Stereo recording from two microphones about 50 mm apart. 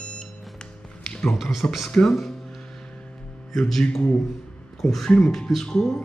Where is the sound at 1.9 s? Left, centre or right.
Centre.